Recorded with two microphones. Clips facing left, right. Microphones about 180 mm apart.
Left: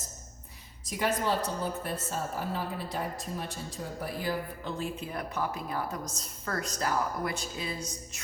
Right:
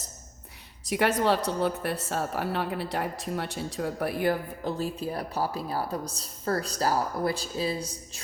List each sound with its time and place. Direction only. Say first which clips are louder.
0.9 s a woman's voice: right 5 dB; 70° right (ahead or behind)
4.6 s a woman's voice: right 5 dB; 35° right (ahead or behind)